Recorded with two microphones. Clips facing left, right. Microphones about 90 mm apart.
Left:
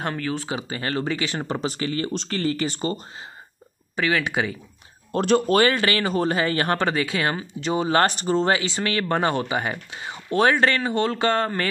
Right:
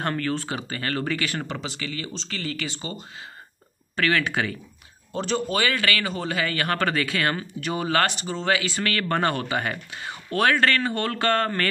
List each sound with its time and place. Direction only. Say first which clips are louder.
0.0 s speech: right 1 dB; 10° left (ahead or behind)
1.5 s speech: left 6 dB; 40° left (ahead or behind)
3.9 s speech: left 1 dB; 15° left (ahead or behind)
5.1 s speech: left 7 dB; 55° left (ahead or behind)
5.8 s speech: left 4 dB; 30° left (ahead or behind)
6.8 s speech: left 1 dB; 20° left (ahead or behind)
8.0 s speech: left 5 dB; 40° left (ahead or behind); by 11.6 s 15° left (ahead or behind)